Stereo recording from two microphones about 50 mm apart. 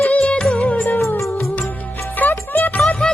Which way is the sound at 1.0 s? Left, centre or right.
Left.